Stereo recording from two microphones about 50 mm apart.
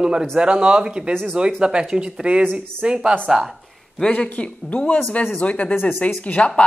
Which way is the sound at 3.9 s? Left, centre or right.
Centre.